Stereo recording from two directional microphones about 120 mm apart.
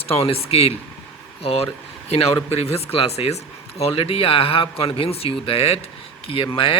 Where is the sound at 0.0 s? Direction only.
55° left (ahead or behind).